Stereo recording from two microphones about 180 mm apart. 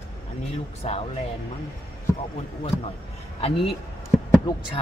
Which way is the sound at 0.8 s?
40° left (ahead or behind).